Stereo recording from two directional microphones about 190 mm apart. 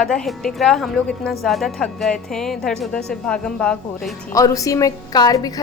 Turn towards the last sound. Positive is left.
turn(degrees=20)  # may be behind; listen again after turning